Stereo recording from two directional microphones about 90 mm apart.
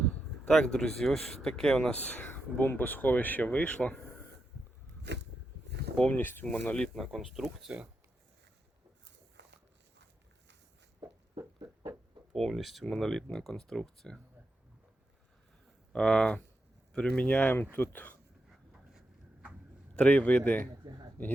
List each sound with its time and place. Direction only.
0.4 s speech: 10° left (ahead or behind)
6.1 s speech: 25° left (ahead or behind)
6.8 s speech: centre (ahead or behind)
11.0 s a sound: 55° right (ahead or behind)
12.3 s speech: 5° left (ahead or behind)
15.9 s speech: 10° left (ahead or behind)
20.0 s speech: 15° left (ahead or behind)